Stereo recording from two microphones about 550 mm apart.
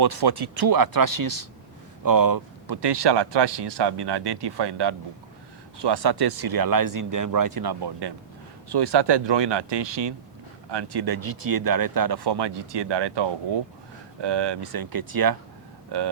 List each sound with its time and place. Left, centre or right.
0.0 s speech: right